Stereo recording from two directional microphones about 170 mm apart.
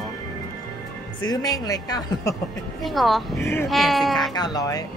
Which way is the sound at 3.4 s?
15° left (ahead or behind).